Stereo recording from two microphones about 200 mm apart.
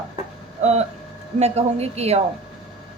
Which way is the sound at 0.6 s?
35° right (ahead or behind).